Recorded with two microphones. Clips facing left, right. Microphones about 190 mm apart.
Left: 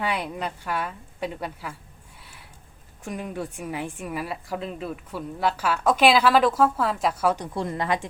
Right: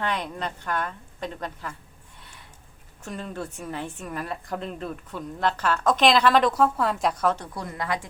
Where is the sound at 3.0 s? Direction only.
15° left (ahead or behind).